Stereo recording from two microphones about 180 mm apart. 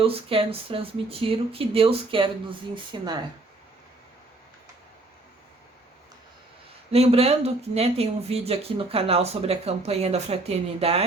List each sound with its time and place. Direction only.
0.0 s speech: 30° right (ahead or behind)
6.9 s speech: 35° right (ahead or behind)